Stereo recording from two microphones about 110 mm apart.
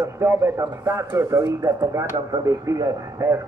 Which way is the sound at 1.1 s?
25° right (ahead or behind).